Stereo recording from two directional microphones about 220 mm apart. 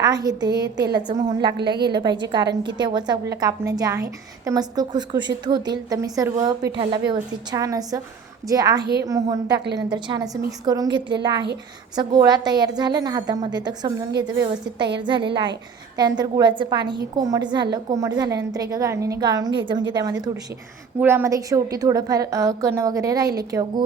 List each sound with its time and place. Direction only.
0.0 s a woman's voice: 15° right (ahead or behind)
8.8 s a woman's voice: 45° right (ahead or behind)
9.0 s a woman's voice: 15° right (ahead or behind)
9.5 s a woman's voice: 50° right (ahead or behind)
9.9 s a woman's voice: 20° right (ahead or behind)
14.3 s a woman's voice: 50° right (ahead or behind)
15.0 s a woman's voice: 20° right (ahead or behind)